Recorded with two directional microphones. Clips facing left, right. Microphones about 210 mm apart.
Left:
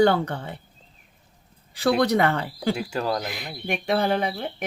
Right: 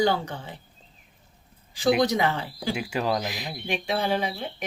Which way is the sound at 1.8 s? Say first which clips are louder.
Left 2 dB; 60° left (ahead or behind).